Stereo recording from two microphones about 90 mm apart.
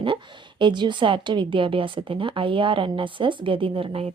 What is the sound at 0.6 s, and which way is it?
A woman's voice, 60° right (ahead or behind).